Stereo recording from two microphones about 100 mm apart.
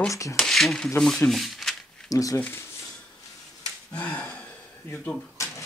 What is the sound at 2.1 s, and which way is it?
Speech, 35° left (ahead or behind).